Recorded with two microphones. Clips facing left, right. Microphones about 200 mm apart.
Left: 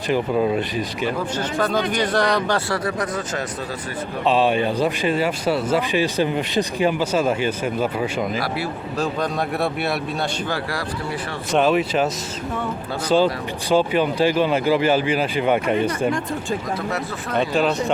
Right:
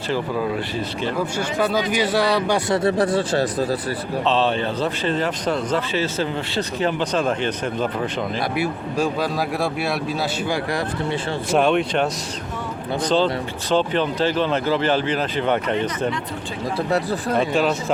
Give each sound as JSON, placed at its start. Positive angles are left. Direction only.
{"t": 0.1, "sound": "speech", "side_deg": 20}
{"t": 1.4, "sound": "speech", "side_deg": -10}
{"t": 2.6, "sound": "speech", "side_deg": -25}
{"t": 4.3, "sound": "speech", "side_deg": 10}
{"t": 8.4, "sound": "speech", "side_deg": -15}
{"t": 9.2, "sound": "speech", "side_deg": 0}
{"t": 11.5, "sound": "speech", "side_deg": 5}
{"t": 13.1, "sound": "speech", "side_deg": 10}
{"t": 16.9, "sound": "speech", "side_deg": -30}
{"t": 17.3, "sound": "speech", "side_deg": 0}